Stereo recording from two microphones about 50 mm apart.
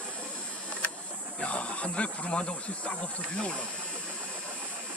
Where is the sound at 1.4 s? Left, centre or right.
Left.